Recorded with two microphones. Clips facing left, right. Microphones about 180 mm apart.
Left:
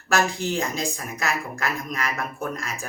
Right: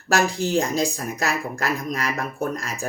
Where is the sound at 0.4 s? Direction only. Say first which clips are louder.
Right 5 dB; 40° right (ahead or behind).